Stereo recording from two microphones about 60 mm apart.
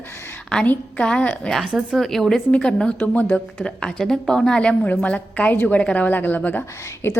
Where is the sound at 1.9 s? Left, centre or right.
Centre.